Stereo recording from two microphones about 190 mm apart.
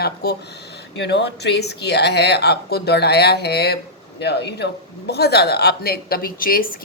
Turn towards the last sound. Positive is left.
turn(degrees=50)  # may be behind; listen again after turning